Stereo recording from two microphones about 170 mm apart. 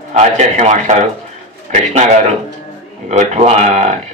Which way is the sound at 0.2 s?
45° right (ahead or behind).